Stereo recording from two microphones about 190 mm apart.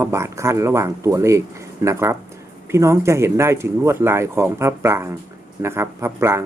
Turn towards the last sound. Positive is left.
turn(degrees=-15)  # may be behind; listen again after turning